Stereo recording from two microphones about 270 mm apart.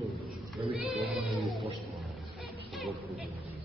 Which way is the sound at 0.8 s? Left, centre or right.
Centre.